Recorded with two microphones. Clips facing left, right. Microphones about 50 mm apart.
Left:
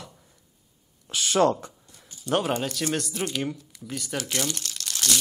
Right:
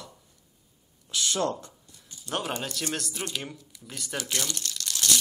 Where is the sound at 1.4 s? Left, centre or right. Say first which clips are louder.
Left 12 dB; left.